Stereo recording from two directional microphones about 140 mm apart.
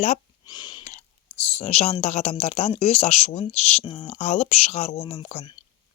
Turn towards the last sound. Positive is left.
turn(degrees=45)  # may be behind; listen again after turning